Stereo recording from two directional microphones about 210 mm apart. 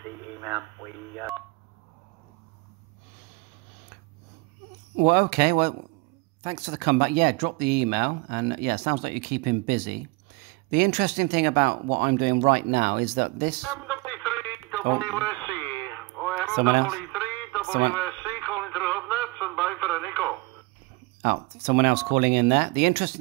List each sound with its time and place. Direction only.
0.4 s speech: 15° right (ahead or behind)
5.0 s speech: 50° right (ahead or behind)
6.4 s speech: 30° right (ahead or behind)
6.7 s speech: 50° right (ahead or behind)
13.7 s a sound: 5° left (ahead or behind)
14.5 s telephone: 20° right (ahead or behind)
15.5 s radio: 5° left (ahead or behind)
18.5 s radio: 10° left (ahead or behind)
21.2 s speech: 45° right (ahead or behind)